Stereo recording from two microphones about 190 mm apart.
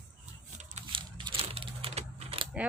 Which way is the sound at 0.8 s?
25° right (ahead or behind).